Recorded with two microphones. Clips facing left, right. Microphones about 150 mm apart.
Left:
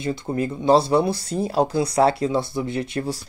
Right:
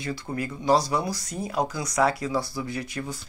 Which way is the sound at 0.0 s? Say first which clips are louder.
Left 6 dB; 25° left (ahead or behind).